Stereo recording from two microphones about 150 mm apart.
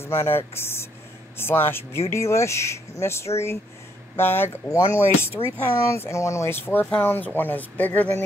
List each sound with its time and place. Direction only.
0.0 s speech: 15° left (ahead or behind)